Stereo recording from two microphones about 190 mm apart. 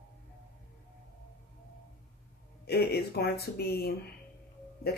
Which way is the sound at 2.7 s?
55° left (ahead or behind).